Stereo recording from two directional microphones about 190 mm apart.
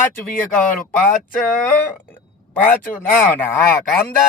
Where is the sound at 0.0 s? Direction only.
10° left (ahead or behind).